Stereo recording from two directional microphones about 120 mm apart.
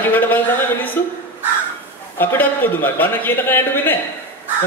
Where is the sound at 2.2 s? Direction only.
15° left (ahead or behind).